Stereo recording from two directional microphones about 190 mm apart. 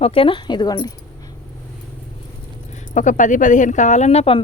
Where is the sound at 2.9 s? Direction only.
40° left (ahead or behind).